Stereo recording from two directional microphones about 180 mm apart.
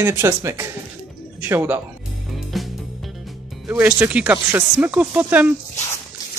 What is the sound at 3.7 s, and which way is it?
Speech, 10° right (ahead or behind).